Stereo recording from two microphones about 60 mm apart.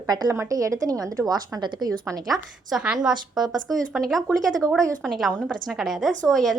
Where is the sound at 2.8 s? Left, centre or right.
Centre.